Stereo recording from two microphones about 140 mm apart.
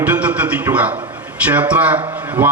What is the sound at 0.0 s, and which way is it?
A man's voice, 10° right (ahead or behind).